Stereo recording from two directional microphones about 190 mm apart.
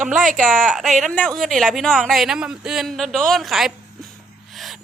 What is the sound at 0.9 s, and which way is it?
Speech, 40° right (ahead or behind).